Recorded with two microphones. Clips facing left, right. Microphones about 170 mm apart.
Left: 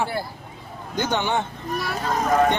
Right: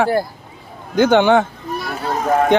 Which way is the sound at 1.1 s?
90° right.